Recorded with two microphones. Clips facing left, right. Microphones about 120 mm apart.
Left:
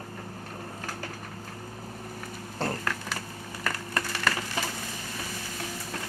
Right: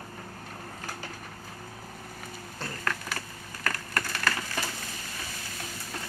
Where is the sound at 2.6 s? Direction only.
65° left (ahead or behind).